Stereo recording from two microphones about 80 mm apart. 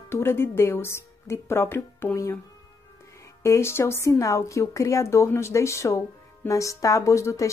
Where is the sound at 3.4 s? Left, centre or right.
Left.